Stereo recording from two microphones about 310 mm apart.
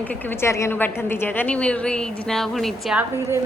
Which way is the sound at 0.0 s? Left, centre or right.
Centre.